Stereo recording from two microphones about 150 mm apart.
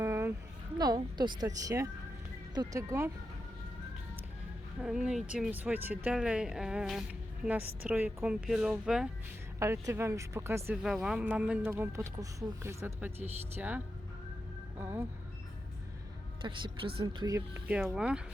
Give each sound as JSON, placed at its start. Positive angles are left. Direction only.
{"t": 0.0, "sound": "a sound", "side_deg": -15}
{"t": 0.8, "sound": "a woman's voice", "side_deg": -25}
{"t": 4.8, "sound": "speech", "side_deg": -5}
{"t": 9.8, "sound": "a woman's voice", "side_deg": -20}
{"t": 10.8, "sound": "speech", "side_deg": -5}
{"t": 11.7, "sound": "speech", "side_deg": -20}
{"t": 16.4, "sound": "speech", "side_deg": -35}
{"t": 17.3, "sound": "speech", "side_deg": -10}